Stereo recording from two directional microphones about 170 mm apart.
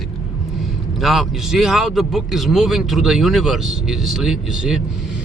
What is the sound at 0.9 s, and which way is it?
A man's voice, centre (ahead or behind).